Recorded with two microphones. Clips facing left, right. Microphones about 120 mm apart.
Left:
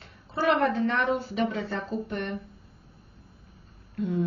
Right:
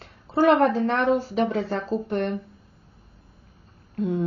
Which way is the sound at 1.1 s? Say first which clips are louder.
Right 5 dB; 35° right (ahead or behind).